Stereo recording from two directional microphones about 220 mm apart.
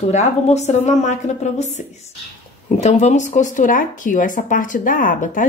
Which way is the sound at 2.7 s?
30° left (ahead or behind).